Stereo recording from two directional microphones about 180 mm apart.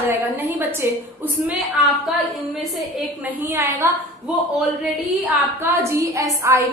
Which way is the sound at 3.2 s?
10° right (ahead or behind).